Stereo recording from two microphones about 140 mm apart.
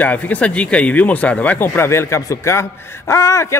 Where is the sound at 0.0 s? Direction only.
10° left (ahead or behind).